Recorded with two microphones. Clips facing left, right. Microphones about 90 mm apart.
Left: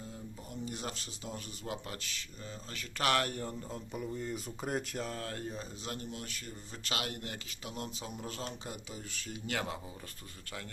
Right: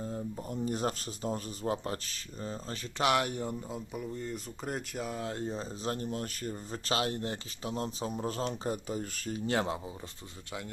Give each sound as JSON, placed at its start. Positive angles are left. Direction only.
{"t": 0.0, "sound": "speech", "side_deg": -40}
{"t": 3.0, "sound": "speech", "side_deg": -15}
{"t": 5.1, "sound": "speech", "side_deg": -20}
{"t": 9.5, "sound": "speech", "side_deg": -25}